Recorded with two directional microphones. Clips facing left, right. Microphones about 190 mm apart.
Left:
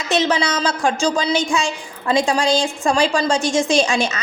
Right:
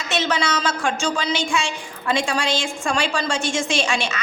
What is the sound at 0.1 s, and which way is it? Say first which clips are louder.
A woman's voice: left 4 dB; 35° left (ahead or behind).